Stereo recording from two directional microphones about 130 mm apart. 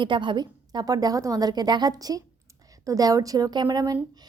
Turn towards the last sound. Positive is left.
turn(degrees=-30)  # may be behind; listen again after turning